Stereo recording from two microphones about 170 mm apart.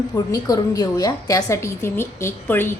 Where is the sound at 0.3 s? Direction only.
20° left (ahead or behind).